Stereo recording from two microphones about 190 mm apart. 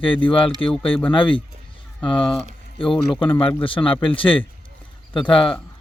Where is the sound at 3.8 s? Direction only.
25° left (ahead or behind).